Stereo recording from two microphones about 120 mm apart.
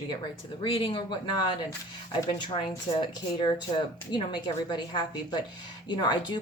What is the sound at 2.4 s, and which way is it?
Speech, 40° left (ahead or behind).